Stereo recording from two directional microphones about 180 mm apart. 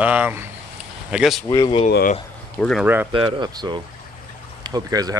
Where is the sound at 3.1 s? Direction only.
25° right (ahead or behind).